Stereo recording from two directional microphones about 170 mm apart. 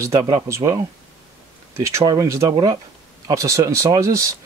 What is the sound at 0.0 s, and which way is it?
Speech, 20° right (ahead or behind).